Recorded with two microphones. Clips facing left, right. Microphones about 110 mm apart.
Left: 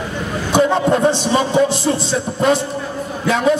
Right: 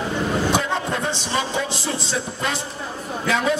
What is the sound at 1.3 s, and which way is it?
Speech, 50° left (ahead or behind).